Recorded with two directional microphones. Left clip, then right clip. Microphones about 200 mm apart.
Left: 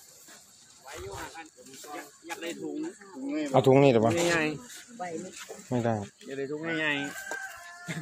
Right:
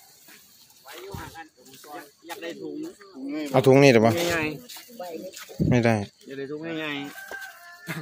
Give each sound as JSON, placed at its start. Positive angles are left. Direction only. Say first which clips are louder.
{"t": 0.8, "sound": "snake", "louder": "right 1 dB", "side_deg": 0}
{"t": 2.0, "sound": "speech", "louder": "right 2 dB", "side_deg": 0}
{"t": 3.3, "sound": "speech", "louder": "right 4 dB", "side_deg": -20}
{"t": 5.7, "sound": "speech", "louder": "right 7 dB", "side_deg": -35}
{"t": 6.2, "sound": "speech", "louder": "even", "side_deg": -15}